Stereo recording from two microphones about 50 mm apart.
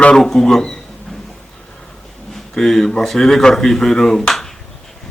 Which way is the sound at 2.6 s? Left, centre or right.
Centre.